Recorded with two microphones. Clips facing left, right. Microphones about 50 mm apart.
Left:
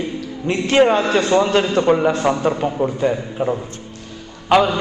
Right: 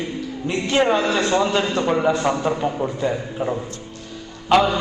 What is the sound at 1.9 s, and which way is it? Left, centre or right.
A man's voice, centre.